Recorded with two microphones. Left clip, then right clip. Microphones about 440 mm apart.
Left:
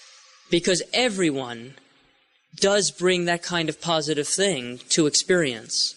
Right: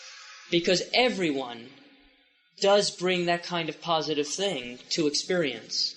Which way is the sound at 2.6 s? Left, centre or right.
Left.